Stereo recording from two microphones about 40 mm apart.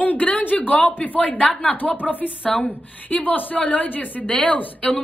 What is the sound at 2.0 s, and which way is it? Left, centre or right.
Speech, left.